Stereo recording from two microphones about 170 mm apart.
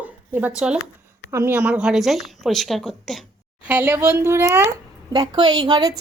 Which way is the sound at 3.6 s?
10° right (ahead or behind).